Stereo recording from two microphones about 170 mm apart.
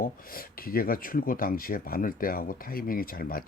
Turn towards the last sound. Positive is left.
turn(degrees=60)  # may be behind; listen again after turning